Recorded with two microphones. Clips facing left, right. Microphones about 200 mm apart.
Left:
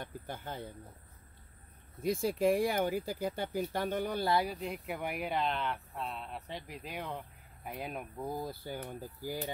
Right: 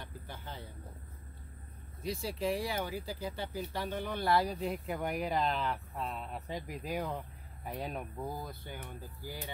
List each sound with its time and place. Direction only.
0.0 s speech: 50° left (ahead or behind)
2.0 s speech: 50° left (ahead or behind)
4.4 s speech: 5° left (ahead or behind)
6.5 s speech: 45° right (ahead or behind)
6.9 s speech: centre (ahead or behind)
8.4 s speech: 35° left (ahead or behind)